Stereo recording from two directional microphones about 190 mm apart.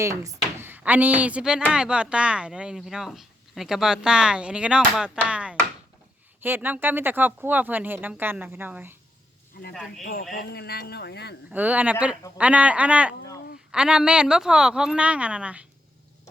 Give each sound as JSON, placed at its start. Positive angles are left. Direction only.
{"t": 0.0, "sound": "speech", "side_deg": -15}
{"t": 10.0, "sound": "a man's voice", "side_deg": 50}
{"t": 11.5, "sound": "speech", "side_deg": -10}